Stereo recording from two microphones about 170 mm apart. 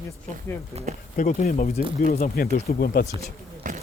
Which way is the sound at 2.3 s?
60° left (ahead or behind).